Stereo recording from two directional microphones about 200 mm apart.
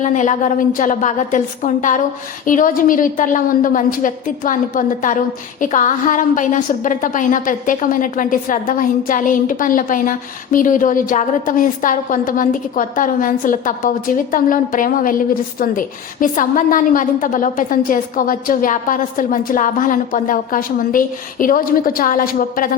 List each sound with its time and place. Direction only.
0.0 s a woman's voice: 35° left (ahead or behind)